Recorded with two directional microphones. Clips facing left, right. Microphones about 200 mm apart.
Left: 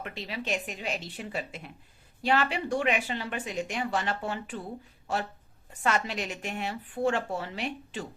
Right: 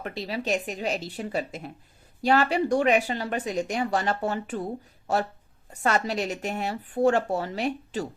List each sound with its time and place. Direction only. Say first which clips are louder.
0.0 s speech: right 6 dB; 40° right (ahead or behind)
5.8 s speech: right 4 dB; 40° right (ahead or behind)